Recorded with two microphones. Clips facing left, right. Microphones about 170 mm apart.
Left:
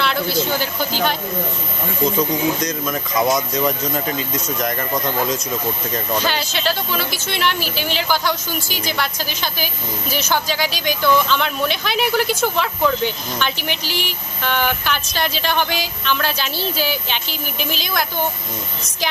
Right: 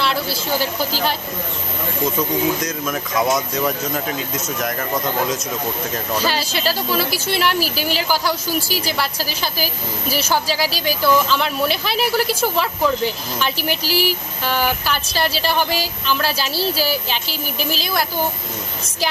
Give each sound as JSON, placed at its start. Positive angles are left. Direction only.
{"t": 0.0, "sound": "a sound", "side_deg": 0}
{"t": 0.6, "sound": "speech", "side_deg": 0}
{"t": 2.6, "sound": "speech", "side_deg": -5}
{"t": 13.6, "sound": "speech", "side_deg": -40}
{"t": 13.9, "sound": "speech", "side_deg": -5}